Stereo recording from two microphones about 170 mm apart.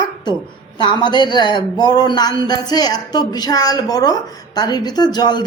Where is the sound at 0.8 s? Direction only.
25° left (ahead or behind).